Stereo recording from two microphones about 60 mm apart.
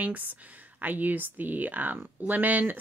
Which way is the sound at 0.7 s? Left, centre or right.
Right.